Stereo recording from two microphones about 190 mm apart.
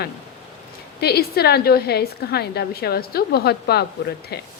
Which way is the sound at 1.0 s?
55° left (ahead or behind).